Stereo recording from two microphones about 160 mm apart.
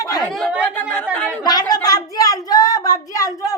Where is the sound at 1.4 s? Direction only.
25° left (ahead or behind).